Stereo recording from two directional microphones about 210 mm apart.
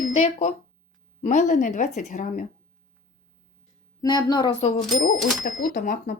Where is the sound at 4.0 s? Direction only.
20° left (ahead or behind).